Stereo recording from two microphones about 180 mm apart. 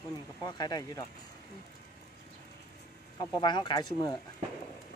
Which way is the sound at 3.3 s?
25° left (ahead or behind).